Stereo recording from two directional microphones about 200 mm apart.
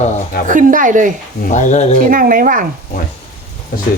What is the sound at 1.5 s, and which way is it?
Speech, 40° left (ahead or behind).